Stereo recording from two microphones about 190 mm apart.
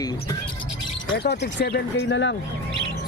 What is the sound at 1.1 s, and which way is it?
Speech, 60° left (ahead or behind).